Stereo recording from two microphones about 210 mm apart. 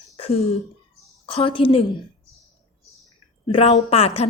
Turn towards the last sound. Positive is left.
turn(degrees=30)  # may be behind; listen again after turning